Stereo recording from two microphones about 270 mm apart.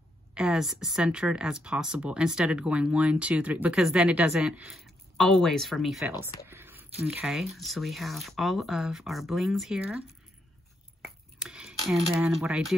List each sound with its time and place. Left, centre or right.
0.3 s speech: centre
6.4 s a sound: centre
7.1 s speech: centre
11.3 s speech: centre